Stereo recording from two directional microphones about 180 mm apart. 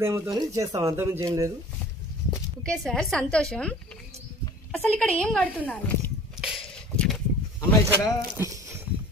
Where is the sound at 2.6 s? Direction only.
5° left (ahead or behind).